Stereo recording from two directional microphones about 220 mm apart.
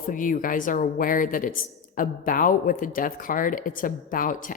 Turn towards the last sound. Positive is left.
turn(degrees=40)  # may be behind; listen again after turning